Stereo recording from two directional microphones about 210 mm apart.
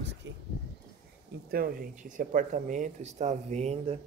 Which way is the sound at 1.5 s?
45° right (ahead or behind).